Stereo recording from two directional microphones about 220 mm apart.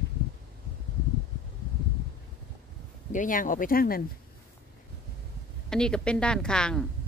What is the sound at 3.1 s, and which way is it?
Speech, 35° left (ahead or behind).